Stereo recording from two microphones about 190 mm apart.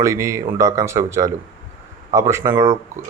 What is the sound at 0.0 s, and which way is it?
Speech, 15° right (ahead or behind).